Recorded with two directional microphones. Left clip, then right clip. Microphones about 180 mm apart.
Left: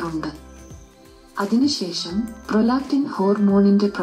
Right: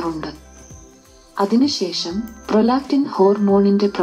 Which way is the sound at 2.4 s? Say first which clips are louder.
Right 4 dB; 20° right (ahead or behind).